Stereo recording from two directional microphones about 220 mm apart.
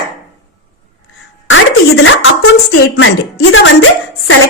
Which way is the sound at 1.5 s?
60° left (ahead or behind).